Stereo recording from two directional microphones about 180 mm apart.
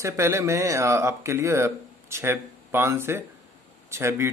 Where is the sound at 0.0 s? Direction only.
15° right (ahead or behind).